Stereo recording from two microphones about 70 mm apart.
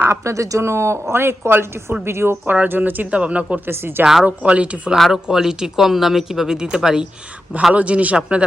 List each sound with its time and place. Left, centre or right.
0.1 s speech: right
2.5 s speech: right
3.7 s speech: right
4.0 s speech: centre
4.3 s speech: centre
4.9 s speech: centre